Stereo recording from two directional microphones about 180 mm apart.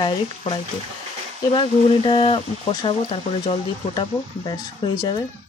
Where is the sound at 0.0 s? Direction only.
25° left (ahead or behind).